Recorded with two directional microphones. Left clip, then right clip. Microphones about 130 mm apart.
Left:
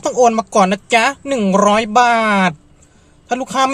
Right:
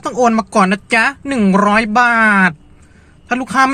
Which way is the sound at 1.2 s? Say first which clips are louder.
Left 1 dB; 30° right (ahead or behind).